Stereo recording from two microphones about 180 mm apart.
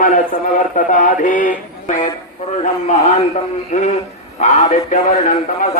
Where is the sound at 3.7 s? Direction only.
40° left (ahead or behind).